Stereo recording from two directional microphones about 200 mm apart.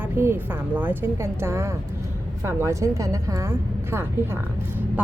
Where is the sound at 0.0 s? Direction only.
10° right (ahead or behind).